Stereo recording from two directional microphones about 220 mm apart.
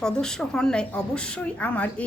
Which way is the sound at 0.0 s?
5° left (ahead or behind).